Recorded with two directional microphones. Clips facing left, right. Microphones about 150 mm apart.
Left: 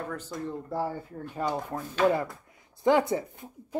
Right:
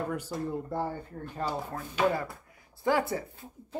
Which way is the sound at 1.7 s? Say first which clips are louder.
Left 3 dB; 20° left (ahead or behind).